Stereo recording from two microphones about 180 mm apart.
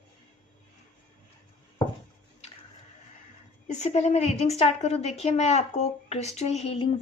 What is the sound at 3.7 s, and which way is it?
A woman's voice, 40° left (ahead or behind).